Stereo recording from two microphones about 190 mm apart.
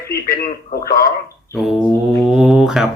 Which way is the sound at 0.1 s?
50° left (ahead or behind).